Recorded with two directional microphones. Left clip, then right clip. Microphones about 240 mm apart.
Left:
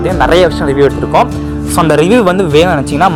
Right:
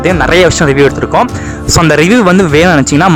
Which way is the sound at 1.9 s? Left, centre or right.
Right.